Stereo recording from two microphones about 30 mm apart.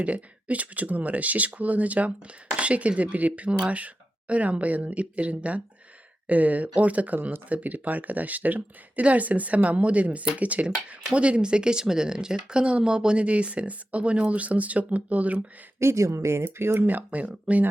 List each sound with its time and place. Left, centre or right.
0.0 s speech: right
6.2 s speech: right
13.1 s speech: right
16.8 s speech: right
17.5 s speech: right